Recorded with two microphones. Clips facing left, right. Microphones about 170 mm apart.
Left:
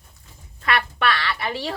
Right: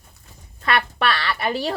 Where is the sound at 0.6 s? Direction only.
30° right (ahead or behind).